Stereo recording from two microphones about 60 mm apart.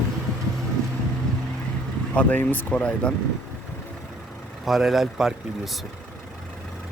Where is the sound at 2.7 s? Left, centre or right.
Centre.